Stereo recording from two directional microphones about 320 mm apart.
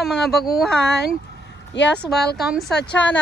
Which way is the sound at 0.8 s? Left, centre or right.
Left.